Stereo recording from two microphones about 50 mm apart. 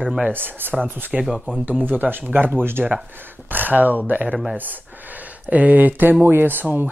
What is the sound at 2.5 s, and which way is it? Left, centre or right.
Speech, right.